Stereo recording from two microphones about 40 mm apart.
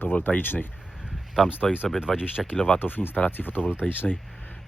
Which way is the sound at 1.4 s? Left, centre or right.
Centre.